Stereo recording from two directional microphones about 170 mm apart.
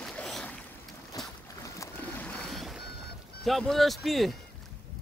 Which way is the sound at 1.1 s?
20° left (ahead or behind).